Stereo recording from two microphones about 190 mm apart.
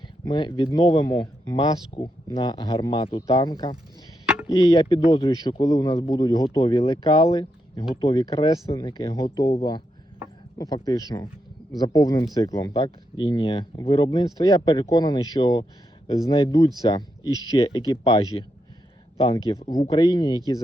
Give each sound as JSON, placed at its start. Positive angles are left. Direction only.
{"t": 0.3, "sound": "speech", "side_deg": 25}
{"t": 10.6, "sound": "speech", "side_deg": 20}
{"t": 19.5, "sound": "speech", "side_deg": 25}